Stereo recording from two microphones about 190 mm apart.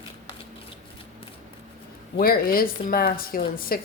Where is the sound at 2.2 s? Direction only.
50° left (ahead or behind).